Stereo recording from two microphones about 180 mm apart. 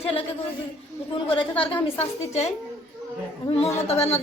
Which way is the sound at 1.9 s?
35° left (ahead or behind).